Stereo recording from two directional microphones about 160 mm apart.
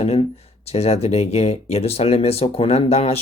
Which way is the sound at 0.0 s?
40° left (ahead or behind).